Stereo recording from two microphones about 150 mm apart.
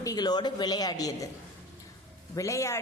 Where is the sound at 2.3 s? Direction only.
20° left (ahead or behind).